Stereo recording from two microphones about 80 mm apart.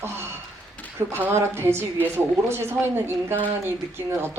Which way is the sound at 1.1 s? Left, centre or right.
Right.